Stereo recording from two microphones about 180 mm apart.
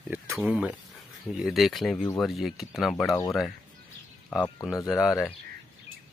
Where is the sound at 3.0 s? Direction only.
15° left (ahead or behind); by 5.4 s centre (ahead or behind).